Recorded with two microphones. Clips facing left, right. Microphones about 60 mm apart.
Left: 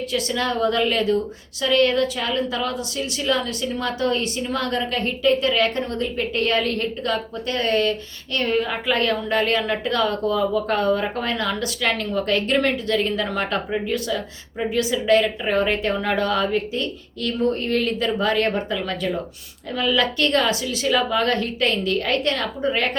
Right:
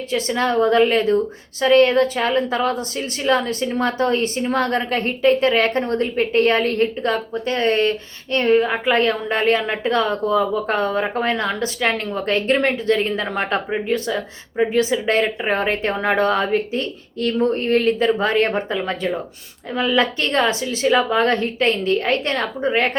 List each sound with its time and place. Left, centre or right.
0.1 s a woman's voice: right